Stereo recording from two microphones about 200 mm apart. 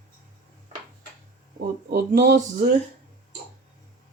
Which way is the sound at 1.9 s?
50° right (ahead or behind).